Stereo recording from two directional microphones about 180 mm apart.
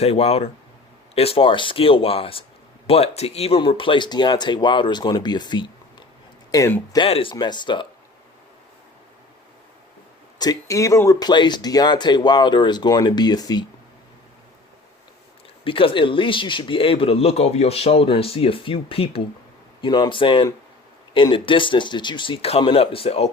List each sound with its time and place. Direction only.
0.0 s speech: 35° left (ahead or behind); by 6.8 s 15° left (ahead or behind)
6.9 s speech: 30° left (ahead or behind)
10.3 s speech: 20° left (ahead or behind)
15.6 s speech: 30° left (ahead or behind)